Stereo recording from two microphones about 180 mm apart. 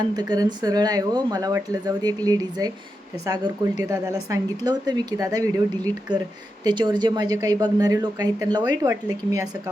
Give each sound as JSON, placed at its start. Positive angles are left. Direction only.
{"t": 0.2, "sound": "a woman's voice", "side_deg": -20}
{"t": 6.7, "sound": "a woman's voice", "side_deg": -25}